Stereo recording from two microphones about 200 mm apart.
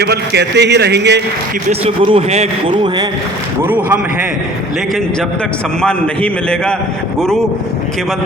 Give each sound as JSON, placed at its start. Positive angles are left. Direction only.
{"t": 0.0, "sound": "a man's voice", "side_deg": -55}
{"t": 1.8, "sound": "a man's voice", "side_deg": -30}
{"t": 5.8, "sound": "a man's voice", "side_deg": 5}